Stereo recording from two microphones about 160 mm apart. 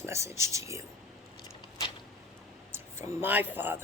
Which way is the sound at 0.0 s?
15° right (ahead or behind).